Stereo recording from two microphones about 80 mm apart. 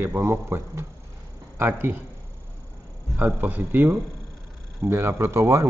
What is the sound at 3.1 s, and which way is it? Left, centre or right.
A man's voice, right.